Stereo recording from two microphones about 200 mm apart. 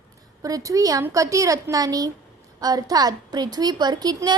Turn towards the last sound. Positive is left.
turn(degrees=-20)  # may be behind; listen again after turning